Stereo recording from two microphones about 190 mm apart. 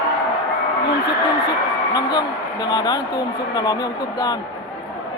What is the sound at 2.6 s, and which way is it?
Speech, 20° left (ahead or behind).